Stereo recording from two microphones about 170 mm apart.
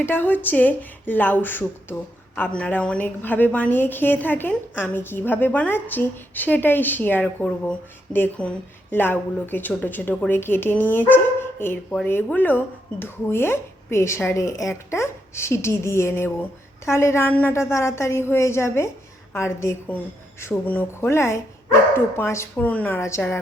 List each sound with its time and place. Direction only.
0.0 s a woman's voice: 10° left (ahead or behind)